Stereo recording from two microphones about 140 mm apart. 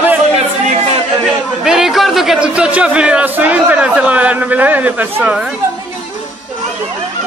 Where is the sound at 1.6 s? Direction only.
5° right (ahead or behind).